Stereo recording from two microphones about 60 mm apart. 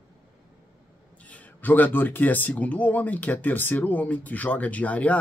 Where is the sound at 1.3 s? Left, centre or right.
Left.